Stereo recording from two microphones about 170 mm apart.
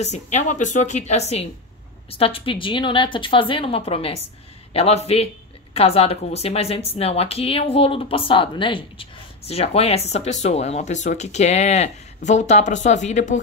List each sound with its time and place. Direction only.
0.0 s a woman's voice: 40° left (ahead or behind)